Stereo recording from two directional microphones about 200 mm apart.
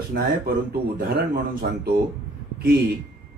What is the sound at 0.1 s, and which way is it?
Speech, 50° right (ahead or behind).